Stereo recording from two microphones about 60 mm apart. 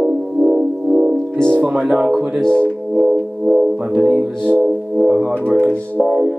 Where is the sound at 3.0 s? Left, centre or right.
Centre.